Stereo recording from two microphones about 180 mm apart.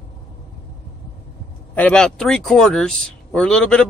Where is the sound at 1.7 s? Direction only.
5° left (ahead or behind).